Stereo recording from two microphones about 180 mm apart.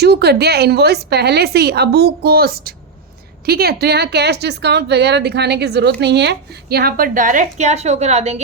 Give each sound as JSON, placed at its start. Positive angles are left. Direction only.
{"t": 0.0, "sound": "a woman's voice", "side_deg": -65}